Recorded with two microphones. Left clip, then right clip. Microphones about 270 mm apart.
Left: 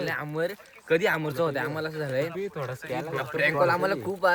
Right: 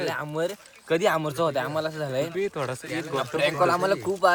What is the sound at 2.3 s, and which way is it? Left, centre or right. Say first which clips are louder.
Speech: right 5 dB; right.